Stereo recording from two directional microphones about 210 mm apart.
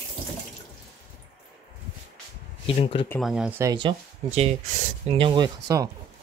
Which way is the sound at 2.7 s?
25° left (ahead or behind).